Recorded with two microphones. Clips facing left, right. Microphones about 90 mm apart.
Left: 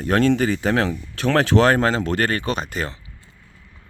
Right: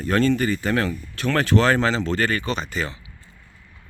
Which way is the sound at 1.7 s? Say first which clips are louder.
Left 2 dB; 45° left (ahead or behind).